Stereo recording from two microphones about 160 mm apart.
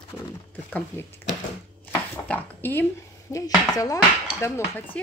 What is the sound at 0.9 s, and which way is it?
Speech, 15° left (ahead or behind).